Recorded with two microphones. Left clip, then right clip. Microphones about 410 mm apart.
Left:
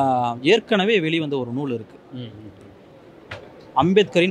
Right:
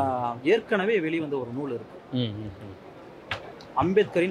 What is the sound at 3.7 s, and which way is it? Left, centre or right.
Speech, left.